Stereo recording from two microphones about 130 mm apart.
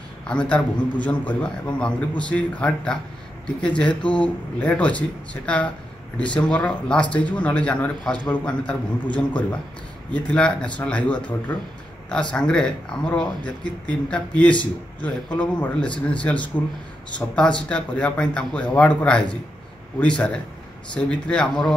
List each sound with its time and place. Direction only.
0.3 s a man's voice: 10° left (ahead or behind)